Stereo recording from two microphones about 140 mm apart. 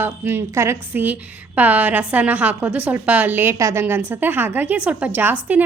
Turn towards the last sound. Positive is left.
turn(degrees=-15)  # may be behind; listen again after turning